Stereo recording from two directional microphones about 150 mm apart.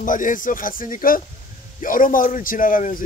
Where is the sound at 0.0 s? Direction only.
60° left (ahead or behind).